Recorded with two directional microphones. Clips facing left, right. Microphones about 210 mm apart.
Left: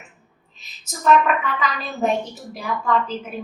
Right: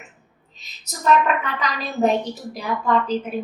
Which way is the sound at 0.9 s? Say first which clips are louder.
Left 1 dB; centre (ahead or behind).